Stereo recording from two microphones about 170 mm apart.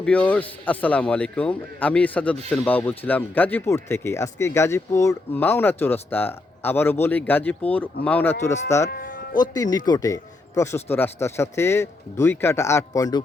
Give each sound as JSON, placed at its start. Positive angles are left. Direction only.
{"t": 0.0, "sound": "speech", "side_deg": 10}
{"t": 9.0, "sound": "music", "side_deg": 50}
{"t": 9.4, "sound": "speech", "side_deg": 25}